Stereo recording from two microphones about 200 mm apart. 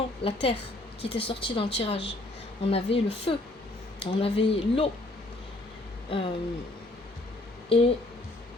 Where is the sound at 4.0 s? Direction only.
25° left (ahead or behind).